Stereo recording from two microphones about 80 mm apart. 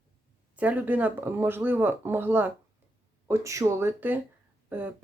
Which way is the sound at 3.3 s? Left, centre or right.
Right.